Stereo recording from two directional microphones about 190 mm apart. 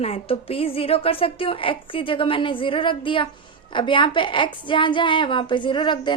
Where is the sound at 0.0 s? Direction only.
30° left (ahead or behind).